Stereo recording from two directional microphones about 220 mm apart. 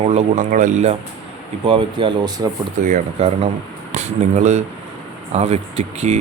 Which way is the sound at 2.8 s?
35° right (ahead or behind).